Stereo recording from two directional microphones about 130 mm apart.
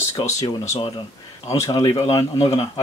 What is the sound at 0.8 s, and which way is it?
Speech, 40° left (ahead or behind).